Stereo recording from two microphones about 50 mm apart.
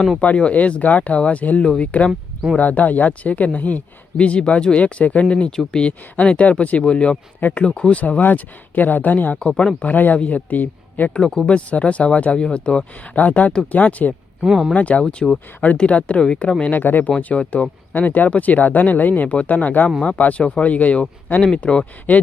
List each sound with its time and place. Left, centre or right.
0.2 s speech: left
5.5 s speech: centre
5.8 s speech: left
8.2 s speech: left
9.5 s speech: centre
9.8 s speech: left
11.1 s speech: centre; by 14.2 s left
14.4 s speech: centre
14.8 s speech: left
16.7 s speech: left